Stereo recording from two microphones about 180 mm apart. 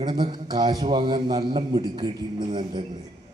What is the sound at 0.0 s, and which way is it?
A man's voice, 25° right (ahead or behind).